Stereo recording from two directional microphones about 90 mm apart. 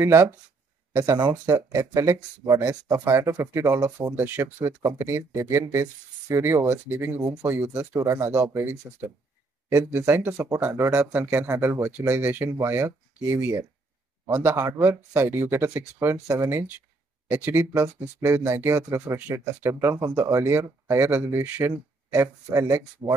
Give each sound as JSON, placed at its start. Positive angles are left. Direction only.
{"t": 0.0, "sound": "speech", "side_deg": -30}
{"t": 1.3, "sound": "speech", "side_deg": -30}
{"t": 3.1, "sound": "speech", "side_deg": -30}
{"t": 8.0, "sound": "speech", "side_deg": -35}
{"t": 8.5, "sound": "speech", "side_deg": -25}
{"t": 10.9, "sound": "speech", "side_deg": -15}
{"t": 11.2, "sound": "speech", "side_deg": -35}